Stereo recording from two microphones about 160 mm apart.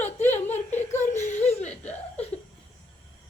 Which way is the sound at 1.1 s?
45° left (ahead or behind).